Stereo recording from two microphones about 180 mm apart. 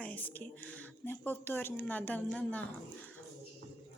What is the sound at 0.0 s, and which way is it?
A woman's voice, 10° left (ahead or behind).